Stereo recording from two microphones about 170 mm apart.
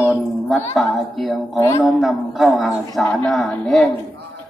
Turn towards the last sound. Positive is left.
turn(degrees=5)  # may be behind; listen again after turning